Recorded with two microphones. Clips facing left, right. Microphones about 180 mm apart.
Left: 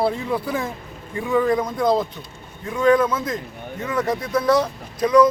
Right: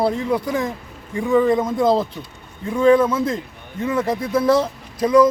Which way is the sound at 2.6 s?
30° right (ahead or behind).